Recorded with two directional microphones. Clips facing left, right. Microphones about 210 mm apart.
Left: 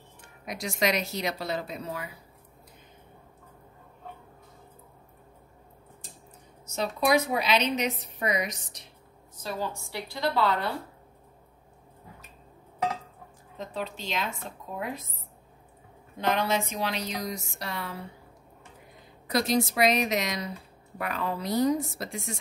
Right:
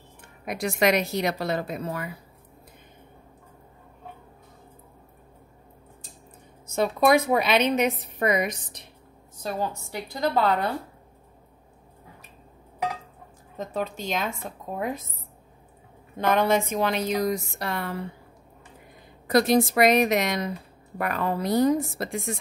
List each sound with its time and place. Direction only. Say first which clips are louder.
0.5 s a woman's voice: right 5 dB; 60° right (ahead or behind)
6.7 s a woman's voice: right 5 dB; 55° right (ahead or behind)
13.6 s speech: right 5 dB; 45° right (ahead or behind)
16.2 s speech: right 5 dB; 55° right (ahead or behind)
19.2 s a woman's voice: right 6 dB; 55° right (ahead or behind)